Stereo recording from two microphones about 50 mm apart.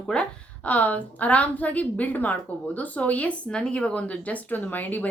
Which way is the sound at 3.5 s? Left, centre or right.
Centre.